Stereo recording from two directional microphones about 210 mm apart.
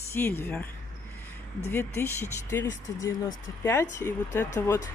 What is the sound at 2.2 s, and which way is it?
Speech, 10° left (ahead or behind).